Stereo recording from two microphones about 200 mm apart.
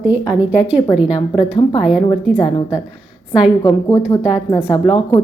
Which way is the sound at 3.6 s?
15° left (ahead or behind).